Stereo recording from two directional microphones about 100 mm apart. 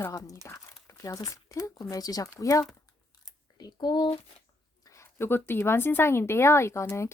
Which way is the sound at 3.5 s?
45° left (ahead or behind).